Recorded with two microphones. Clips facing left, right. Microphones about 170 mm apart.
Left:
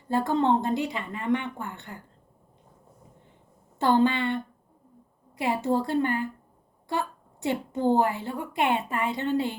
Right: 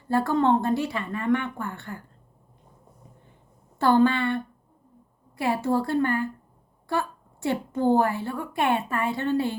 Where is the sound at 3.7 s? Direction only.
20° left (ahead or behind).